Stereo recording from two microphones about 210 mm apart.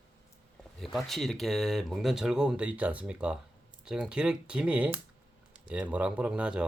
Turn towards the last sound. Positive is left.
turn(degrees=-5)  # may be behind; listen again after turning